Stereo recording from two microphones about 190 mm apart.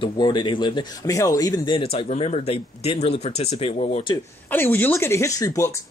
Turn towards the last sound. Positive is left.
turn(degrees=15)  # may be behind; listen again after turning